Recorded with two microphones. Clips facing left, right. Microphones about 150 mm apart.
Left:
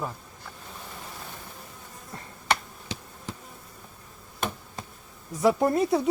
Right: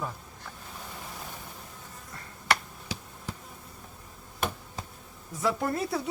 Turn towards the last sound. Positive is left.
turn(degrees=20)  # may be behind; listen again after turning